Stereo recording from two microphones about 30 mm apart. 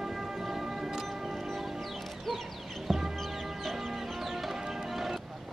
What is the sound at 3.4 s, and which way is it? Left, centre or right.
Chicken, centre.